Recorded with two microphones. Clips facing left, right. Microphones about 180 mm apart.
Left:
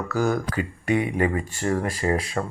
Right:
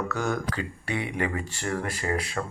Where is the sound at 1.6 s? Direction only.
30° left (ahead or behind).